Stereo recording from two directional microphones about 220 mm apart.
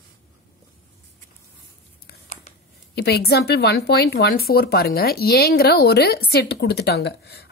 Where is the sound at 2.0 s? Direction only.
35° left (ahead or behind).